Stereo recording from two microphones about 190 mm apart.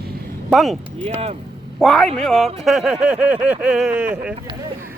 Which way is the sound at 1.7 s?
5° left (ahead or behind).